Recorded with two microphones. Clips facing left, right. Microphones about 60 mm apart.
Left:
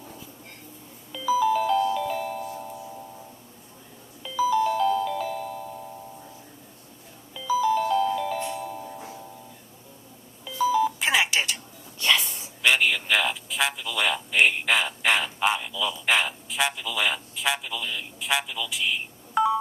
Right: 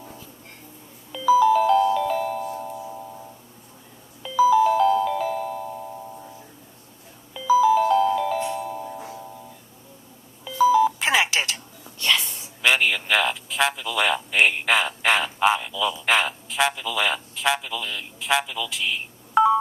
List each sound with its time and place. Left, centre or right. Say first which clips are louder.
1.1 s music: right 6 dB; centre
4.2 s music: right 6 dB; centre
7.3 s music: right 6 dB; centre
10.4 s doorbell: right 5 dB; centre
12.0 s a sound: even; left
12.6 s a man's voice: right 1 dB; centre